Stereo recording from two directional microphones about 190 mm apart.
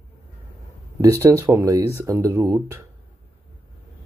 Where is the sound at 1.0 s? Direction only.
15° right (ahead or behind).